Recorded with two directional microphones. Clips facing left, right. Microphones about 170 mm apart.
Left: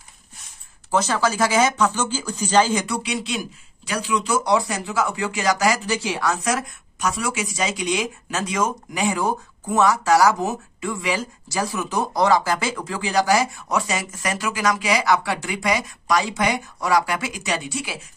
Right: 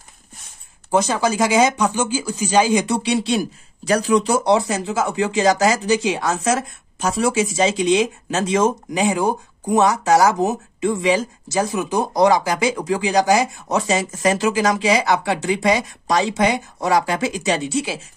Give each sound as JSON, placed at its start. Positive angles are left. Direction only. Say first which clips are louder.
{"t": 0.9, "sound": "speech", "louder": "right 3 dB", "side_deg": -15}
{"t": 3.0, "sound": "speech", "louder": "right 7 dB", "side_deg": -30}
{"t": 4.5, "sound": "speech", "louder": "right 4 dB", "side_deg": -25}